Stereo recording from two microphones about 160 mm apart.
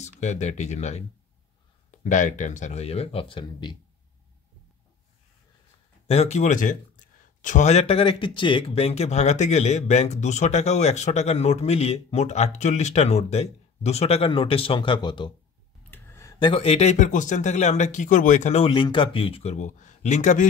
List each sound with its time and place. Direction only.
0.2 s speech: 45° left (ahead or behind); by 3.7 s 30° left (ahead or behind)
6.0 s speech: 40° left (ahead or behind)
15.9 s a sound: 15° left (ahead or behind)
16.3 s speech: 35° left (ahead or behind)
18.7 s speech: 30° left (ahead or behind); by 20.4 s 50° left (ahead or behind)